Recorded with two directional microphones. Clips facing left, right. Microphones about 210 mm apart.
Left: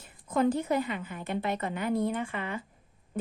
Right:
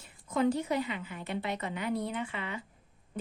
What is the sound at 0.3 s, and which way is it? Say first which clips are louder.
A woman's voice: left 2 dB; 50° left (ahead or behind).